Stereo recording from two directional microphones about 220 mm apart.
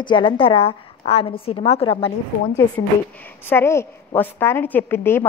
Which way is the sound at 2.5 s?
10° left (ahead or behind).